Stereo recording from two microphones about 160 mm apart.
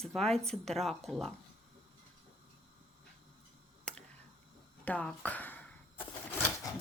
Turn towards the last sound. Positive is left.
turn(degrees=15)  # may be behind; listen again after turning